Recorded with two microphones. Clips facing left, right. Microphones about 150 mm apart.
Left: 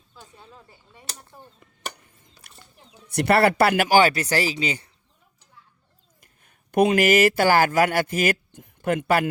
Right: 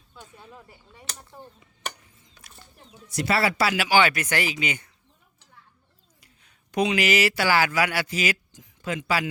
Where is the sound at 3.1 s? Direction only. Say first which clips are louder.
Left 6 dB; 60° left (ahead or behind); by 4.9 s 35° left (ahead or behind).